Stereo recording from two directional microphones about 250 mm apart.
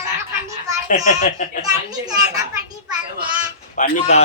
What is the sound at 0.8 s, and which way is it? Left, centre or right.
Speech, left.